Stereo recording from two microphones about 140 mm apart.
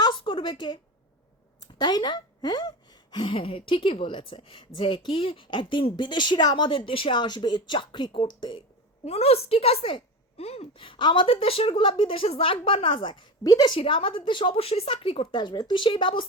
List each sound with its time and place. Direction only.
0.0 s a sound: 35° left (ahead or behind)
1.6 s a woman's voice: 30° left (ahead or behind)
9.0 s a woman's voice: 45° left (ahead or behind)